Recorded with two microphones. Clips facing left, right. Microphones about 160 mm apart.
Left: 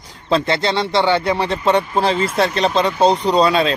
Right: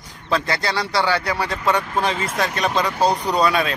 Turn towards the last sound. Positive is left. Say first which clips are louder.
# left 4 dB
turn(degrees=25)  # may be behind; listen again after turning